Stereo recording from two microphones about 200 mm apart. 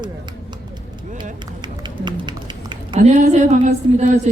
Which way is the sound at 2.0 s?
25° right (ahead or behind).